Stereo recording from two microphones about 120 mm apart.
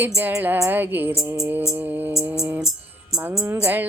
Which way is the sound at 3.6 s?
15° right (ahead or behind).